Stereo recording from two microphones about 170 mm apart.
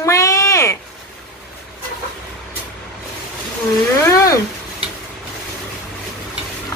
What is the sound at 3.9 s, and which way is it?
Speech, 20° left (ahead or behind).